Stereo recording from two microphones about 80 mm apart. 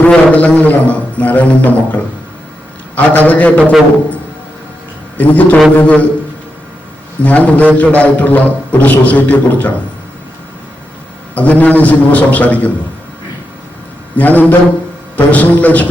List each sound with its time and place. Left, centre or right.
0.0 s a man's voice: centre
5.1 s a man's voice: centre
7.2 s a man's voice: centre
11.3 s a man's voice: centre
14.2 s a man's voice: left